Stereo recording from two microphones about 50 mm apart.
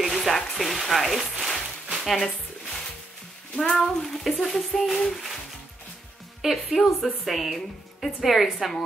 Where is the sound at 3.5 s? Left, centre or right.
Centre.